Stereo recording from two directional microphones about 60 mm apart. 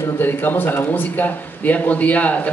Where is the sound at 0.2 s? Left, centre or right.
Left.